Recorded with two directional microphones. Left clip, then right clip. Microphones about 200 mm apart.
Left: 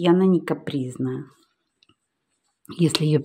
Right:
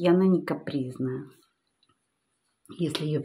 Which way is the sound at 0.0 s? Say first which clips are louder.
Left 4 dB; 30° left (ahead or behind).